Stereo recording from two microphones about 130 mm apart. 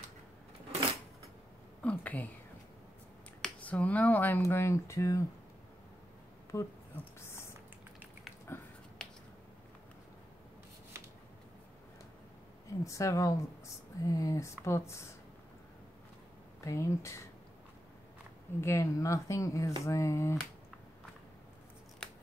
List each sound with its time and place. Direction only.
1.8 s speech: 10° left (ahead or behind)
3.4 s speech: 10° left (ahead or behind)
6.5 s speech: 20° left (ahead or behind)
7.2 s a sound: 20° left (ahead or behind)
8.5 s a sound: 20° left (ahead or behind)
9.0 s a sound: 5° left (ahead or behind)
12.8 s speech: 25° left (ahead or behind)
16.6 s speech: 20° left (ahead or behind)
18.6 s speech: 20° left (ahead or behind)
22.0 s scissors: 5° left (ahead or behind)